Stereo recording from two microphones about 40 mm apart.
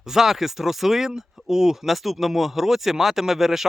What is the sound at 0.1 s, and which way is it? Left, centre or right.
Speech, centre.